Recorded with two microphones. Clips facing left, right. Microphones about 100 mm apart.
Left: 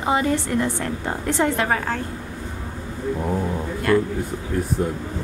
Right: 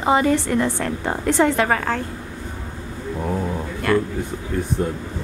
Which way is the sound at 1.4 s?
85° right.